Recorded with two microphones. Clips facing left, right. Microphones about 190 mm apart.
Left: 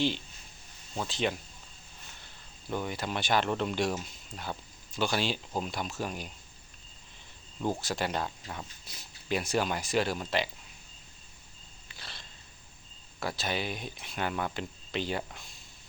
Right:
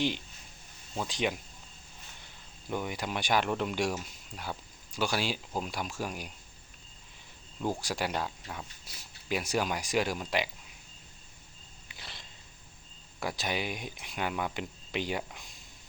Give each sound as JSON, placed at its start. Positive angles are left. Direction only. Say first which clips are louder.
{"t": 1.0, "sound": "speech", "louder": "left 1 dB", "side_deg": -15}
{"t": 2.6, "sound": "speech", "louder": "left 1 dB", "side_deg": -15}
{"t": 7.6, "sound": "speech", "louder": "left 1 dB", "side_deg": -10}
{"t": 11.9, "sound": "a sound", "louder": "even", "side_deg": -20}
{"t": 13.1, "sound": "speech", "louder": "even", "side_deg": -15}